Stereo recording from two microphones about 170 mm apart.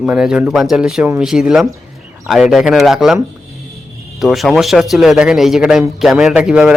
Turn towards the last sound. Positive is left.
turn(degrees=-5)  # may be behind; listen again after turning